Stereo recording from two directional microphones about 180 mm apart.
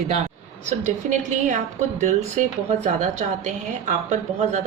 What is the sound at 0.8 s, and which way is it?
A woman's voice, 45° right (ahead or behind).